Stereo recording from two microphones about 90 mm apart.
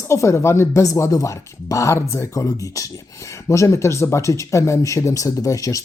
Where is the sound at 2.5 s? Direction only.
40° left (ahead or behind).